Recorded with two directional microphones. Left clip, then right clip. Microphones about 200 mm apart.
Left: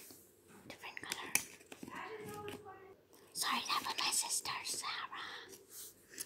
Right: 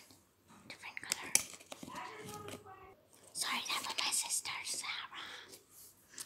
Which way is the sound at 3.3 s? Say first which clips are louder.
Left 1 dB; 15° left (ahead or behind).